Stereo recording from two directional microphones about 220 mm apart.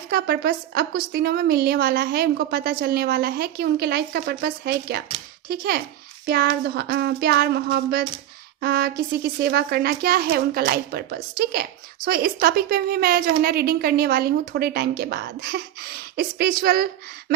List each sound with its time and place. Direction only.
0.1 s a woman's voice: 45° right (ahead or behind)